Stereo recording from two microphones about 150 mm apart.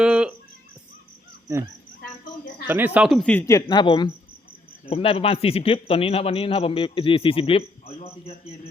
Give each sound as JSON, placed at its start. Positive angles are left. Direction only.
{"t": 0.0, "sound": "a sound", "side_deg": -5}
{"t": 2.6, "sound": "speech", "side_deg": -15}
{"t": 3.2, "sound": "a man's voice", "side_deg": 10}
{"t": 3.4, "sound": "speech", "side_deg": 25}
{"t": 4.9, "sound": "speech", "side_deg": 40}